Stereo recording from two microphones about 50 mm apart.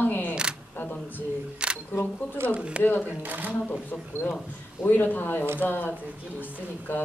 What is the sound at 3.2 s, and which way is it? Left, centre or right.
Speech, right.